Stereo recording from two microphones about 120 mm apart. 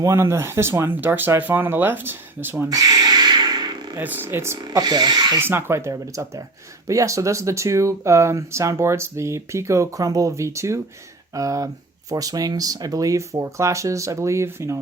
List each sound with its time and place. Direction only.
0.0 s speech: 25° right (ahead or behind)
2.6 s a sound: 30° right (ahead or behind)
3.9 s speech: 15° right (ahead or behind)
4.5 s speech: 35° right (ahead or behind)
5.4 s speech: 20° right (ahead or behind)